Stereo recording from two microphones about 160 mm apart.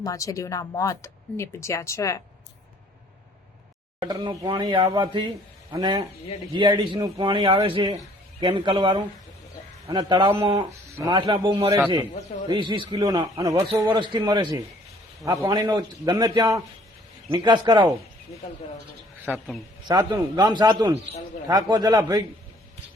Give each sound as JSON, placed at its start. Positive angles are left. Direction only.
{"t": 0.0, "sound": "speech", "side_deg": 20}
{"t": 4.0, "sound": "a man's voice", "side_deg": -25}
{"t": 19.9, "sound": "a man's voice", "side_deg": -25}